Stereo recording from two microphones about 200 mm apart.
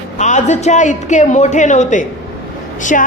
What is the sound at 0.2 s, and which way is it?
A woman's voice, 35° left (ahead or behind).